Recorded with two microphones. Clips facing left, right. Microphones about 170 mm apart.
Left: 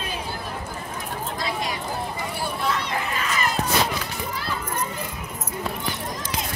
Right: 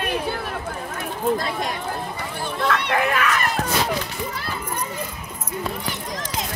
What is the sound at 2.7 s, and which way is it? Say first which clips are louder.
Run: right 9 dB; 70° right (ahead or behind).